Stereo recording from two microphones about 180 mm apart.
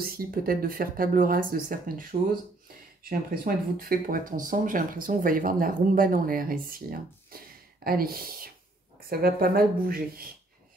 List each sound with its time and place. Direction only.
0.0 s speech: 55° right (ahead or behind)